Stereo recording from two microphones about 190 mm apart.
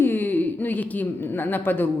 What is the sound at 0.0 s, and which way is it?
A woman's voice, 10° left (ahead or behind).